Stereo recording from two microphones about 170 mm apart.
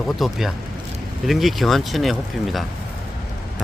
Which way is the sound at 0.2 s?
Centre (ahead or behind).